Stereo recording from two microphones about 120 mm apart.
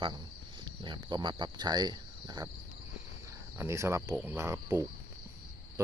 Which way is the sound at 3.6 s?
25° right (ahead or behind).